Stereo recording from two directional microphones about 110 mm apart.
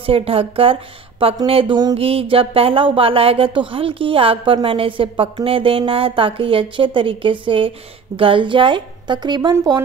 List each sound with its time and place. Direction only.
0.0 s speech: 60° right (ahead or behind); by 9.8 s 40° right (ahead or behind)